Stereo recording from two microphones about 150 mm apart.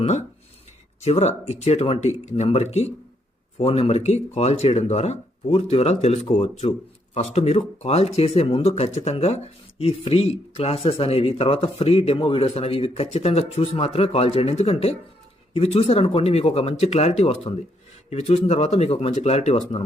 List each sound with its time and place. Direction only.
0.0 s speech: 50° left (ahead or behind)